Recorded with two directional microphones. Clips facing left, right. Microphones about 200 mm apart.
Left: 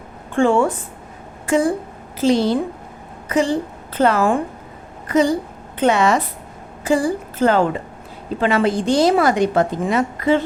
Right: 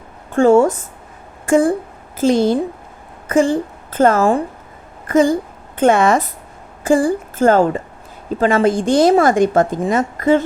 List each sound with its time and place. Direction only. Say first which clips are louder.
0.3 s a woman's voice: right 5 dB; 40° right (ahead or behind)